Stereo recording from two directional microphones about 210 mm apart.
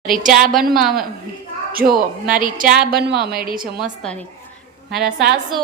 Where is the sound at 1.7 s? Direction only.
45° right (ahead or behind).